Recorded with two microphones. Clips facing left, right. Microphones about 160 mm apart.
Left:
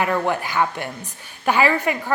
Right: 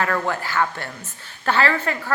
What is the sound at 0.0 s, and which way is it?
A woman's voice, 15° left (ahead or behind).